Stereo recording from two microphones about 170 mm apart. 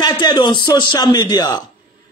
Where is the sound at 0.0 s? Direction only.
25° left (ahead or behind).